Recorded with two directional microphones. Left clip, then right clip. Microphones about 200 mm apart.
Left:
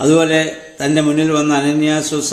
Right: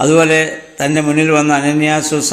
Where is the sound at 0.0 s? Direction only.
20° right (ahead or behind).